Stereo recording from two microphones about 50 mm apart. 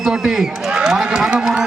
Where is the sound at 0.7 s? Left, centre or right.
Centre.